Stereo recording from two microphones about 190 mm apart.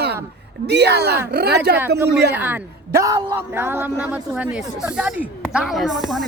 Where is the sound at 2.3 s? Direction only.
10° right (ahead or behind).